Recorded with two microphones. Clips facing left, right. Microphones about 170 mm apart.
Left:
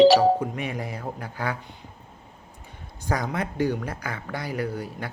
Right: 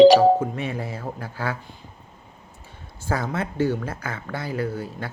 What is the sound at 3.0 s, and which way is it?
Speech, 15° left (ahead or behind).